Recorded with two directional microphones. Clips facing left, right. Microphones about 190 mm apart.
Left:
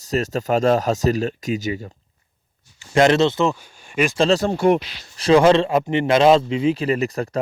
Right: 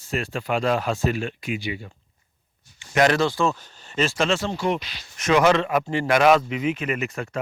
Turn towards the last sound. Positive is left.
turn(degrees=35)  # may be behind; listen again after turning